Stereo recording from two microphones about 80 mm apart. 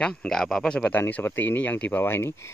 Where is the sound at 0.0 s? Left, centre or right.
Centre.